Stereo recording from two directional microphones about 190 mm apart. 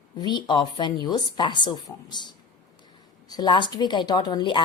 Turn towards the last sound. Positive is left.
turn(degrees=25)  # may be behind; listen again after turning